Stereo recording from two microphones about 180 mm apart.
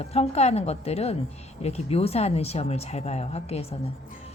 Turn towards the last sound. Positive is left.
turn(degrees=35)  # may be behind; listen again after turning